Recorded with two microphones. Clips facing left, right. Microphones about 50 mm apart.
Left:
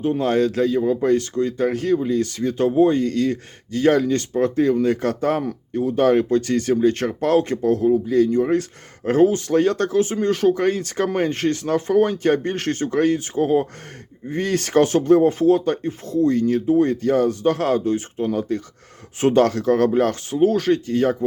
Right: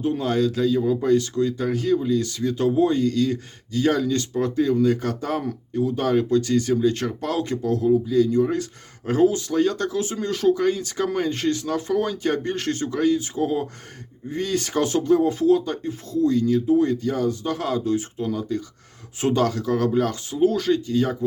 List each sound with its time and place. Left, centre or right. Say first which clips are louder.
0.2 s speech: left 5 dB; left